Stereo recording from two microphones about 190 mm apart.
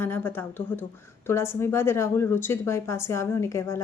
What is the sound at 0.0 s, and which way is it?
Speech, 10° left (ahead or behind).